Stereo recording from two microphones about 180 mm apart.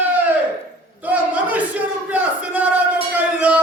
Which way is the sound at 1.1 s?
10° right (ahead or behind).